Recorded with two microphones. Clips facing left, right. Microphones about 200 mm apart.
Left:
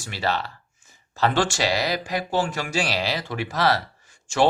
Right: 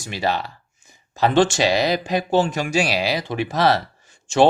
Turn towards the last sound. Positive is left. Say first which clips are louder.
# right 5 dB
turn(degrees=-20)  # may be behind; listen again after turning